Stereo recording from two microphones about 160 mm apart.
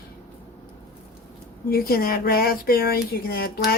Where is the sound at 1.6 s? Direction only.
70° left (ahead or behind).